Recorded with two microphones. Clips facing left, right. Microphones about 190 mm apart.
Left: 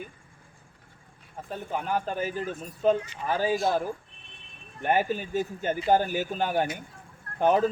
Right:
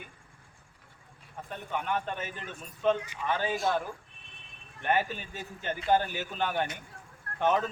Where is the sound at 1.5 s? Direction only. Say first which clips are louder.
Left 3 dB; 35° left (ahead or behind).